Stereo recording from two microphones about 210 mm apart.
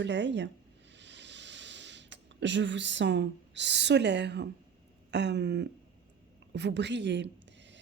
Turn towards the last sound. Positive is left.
turn(degrees=-55)  # may be behind; listen again after turning